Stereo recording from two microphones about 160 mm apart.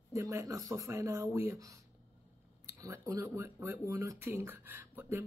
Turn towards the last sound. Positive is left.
turn(degrees=-15)  # may be behind; listen again after turning